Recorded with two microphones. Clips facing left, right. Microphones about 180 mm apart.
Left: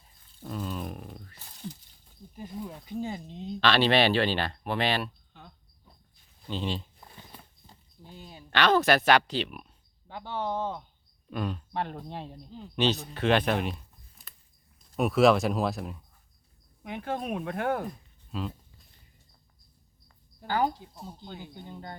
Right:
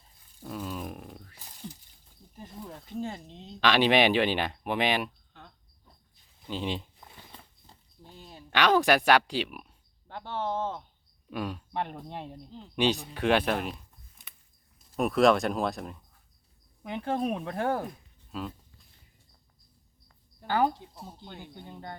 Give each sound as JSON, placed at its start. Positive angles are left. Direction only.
{"t": 0.3, "sound": "a sound", "side_deg": -5}
{"t": 2.3, "sound": "speech", "side_deg": 5}
{"t": 3.6, "sound": "speech", "side_deg": -15}
{"t": 5.3, "sound": "cricket", "side_deg": 5}
{"t": 6.4, "sound": "speech", "side_deg": -10}
{"t": 7.3, "sound": "a sound", "side_deg": 5}
{"t": 8.5, "sound": "speech", "side_deg": -10}
{"t": 12.0, "sound": "speech", "side_deg": -20}
{"t": 12.5, "sound": "speech", "side_deg": 5}
{"t": 12.7, "sound": "speech", "side_deg": -10}
{"t": 14.9, "sound": "speech", "side_deg": 0}
{"t": 16.8, "sound": "speech", "side_deg": -30}
{"t": 18.3, "sound": "speech", "side_deg": 0}
{"t": 21.2, "sound": "speech", "side_deg": 10}